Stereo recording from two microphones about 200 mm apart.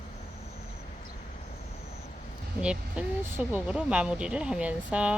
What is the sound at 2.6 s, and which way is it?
Speech, 5° right (ahead or behind).